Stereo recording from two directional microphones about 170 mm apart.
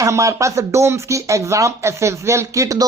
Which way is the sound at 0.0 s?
20° right (ahead or behind).